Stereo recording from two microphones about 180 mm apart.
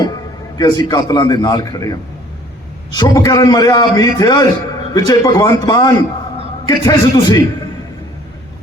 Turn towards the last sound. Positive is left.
turn(degrees=20)  # may be behind; listen again after turning